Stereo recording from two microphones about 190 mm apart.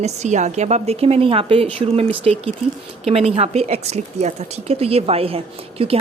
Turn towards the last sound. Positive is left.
turn(degrees=-30)  # may be behind; listen again after turning